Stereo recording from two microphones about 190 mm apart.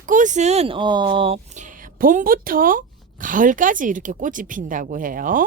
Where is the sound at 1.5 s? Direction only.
45° right (ahead or behind).